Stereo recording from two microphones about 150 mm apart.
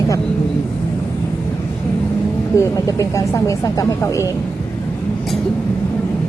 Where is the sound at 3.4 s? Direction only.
20° left (ahead or behind).